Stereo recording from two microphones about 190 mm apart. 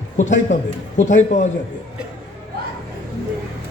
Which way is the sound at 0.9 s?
40° left (ahead or behind).